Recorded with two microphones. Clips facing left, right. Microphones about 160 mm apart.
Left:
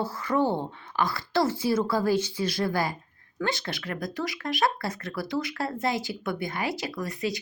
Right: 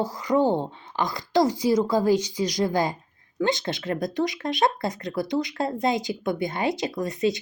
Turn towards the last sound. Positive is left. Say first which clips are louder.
# right 6 dB
turn(degrees=-20)  # may be behind; listen again after turning